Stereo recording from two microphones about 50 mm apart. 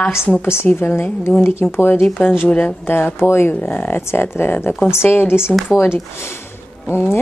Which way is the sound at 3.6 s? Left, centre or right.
Left.